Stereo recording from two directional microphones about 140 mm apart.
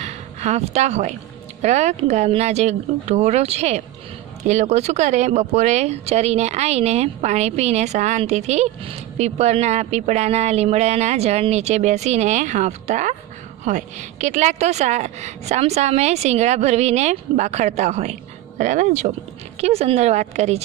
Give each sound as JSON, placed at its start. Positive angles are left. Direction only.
{"t": 0.0, "sound": "a sound", "side_deg": -55}
{"t": 1.6, "sound": "speech", "side_deg": -55}
{"t": 19.6, "sound": "speech", "side_deg": -45}